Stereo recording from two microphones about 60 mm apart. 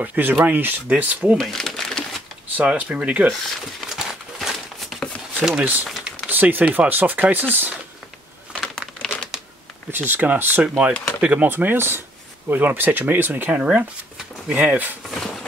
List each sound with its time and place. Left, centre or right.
0.0 s speech: right
1.4 s crumpling: centre
2.6 s speech: centre
3.9 s a sound: centre
5.0 s a sound: centre
5.6 s speech: right
5.9 s a sound: centre
6.2 s speech: right
8.5 s crumpling: centre
9.8 s speech: right
13.6 s speech: centre
15.0 s a sound: centre